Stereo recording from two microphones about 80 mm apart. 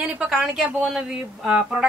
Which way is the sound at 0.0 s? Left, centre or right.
Centre.